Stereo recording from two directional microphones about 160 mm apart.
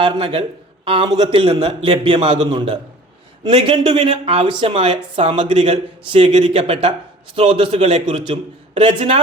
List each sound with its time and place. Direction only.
0.0 s speech: 35° right (ahead or behind)